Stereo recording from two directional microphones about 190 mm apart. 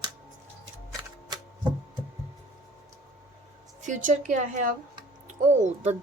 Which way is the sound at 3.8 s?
40° right (ahead or behind).